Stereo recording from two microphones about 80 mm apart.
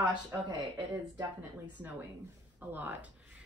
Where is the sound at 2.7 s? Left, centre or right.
Right.